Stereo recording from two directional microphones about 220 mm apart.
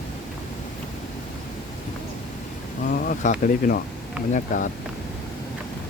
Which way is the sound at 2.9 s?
40° left (ahead or behind).